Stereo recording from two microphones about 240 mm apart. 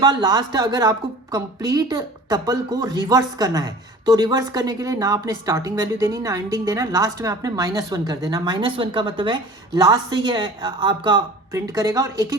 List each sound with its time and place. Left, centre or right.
0.0 s a woman's voice: centre